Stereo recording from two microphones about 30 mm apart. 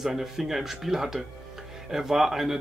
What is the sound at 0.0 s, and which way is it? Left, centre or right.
Speech, centre.